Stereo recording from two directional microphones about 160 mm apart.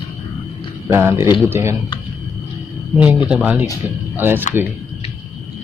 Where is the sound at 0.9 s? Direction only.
15° right (ahead or behind).